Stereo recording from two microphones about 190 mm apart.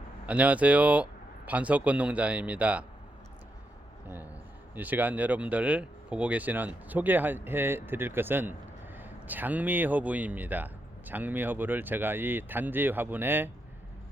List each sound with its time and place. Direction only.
0.3 s speech: 5° right (ahead or behind)
4.7 s speech: 10° right (ahead or behind)